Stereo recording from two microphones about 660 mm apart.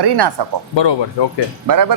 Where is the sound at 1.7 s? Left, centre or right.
Right.